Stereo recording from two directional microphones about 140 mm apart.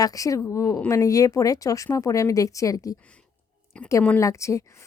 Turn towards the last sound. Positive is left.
turn(degrees=20)  # may be behind; listen again after turning